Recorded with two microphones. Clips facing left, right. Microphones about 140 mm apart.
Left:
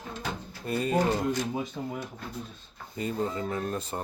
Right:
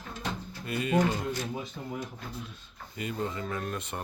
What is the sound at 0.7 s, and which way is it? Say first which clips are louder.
Speech: left 1 dB; 35° left (ahead or behind).